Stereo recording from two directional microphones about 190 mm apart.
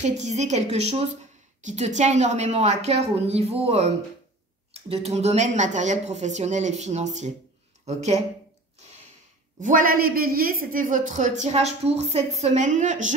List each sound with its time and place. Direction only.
0.0 s speech: 35° right (ahead or behind)
9.6 s speech: 45° right (ahead or behind)